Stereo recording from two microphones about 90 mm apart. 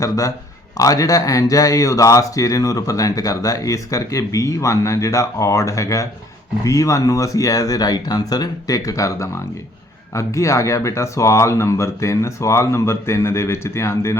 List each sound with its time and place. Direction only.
0.0 s speech: 40° left (ahead or behind)